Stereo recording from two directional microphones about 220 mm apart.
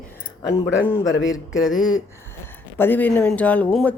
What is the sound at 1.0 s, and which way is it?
Speech, 60° left (ahead or behind).